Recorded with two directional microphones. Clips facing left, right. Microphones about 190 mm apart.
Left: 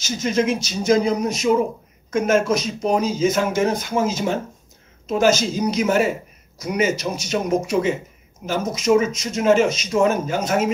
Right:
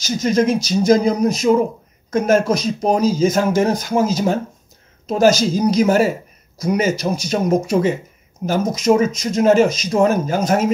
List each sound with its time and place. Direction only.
0.0 s speech: 40° right (ahead or behind)